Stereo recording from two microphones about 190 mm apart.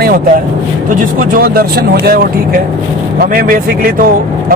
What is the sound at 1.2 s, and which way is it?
Speech, 50° right (ahead or behind).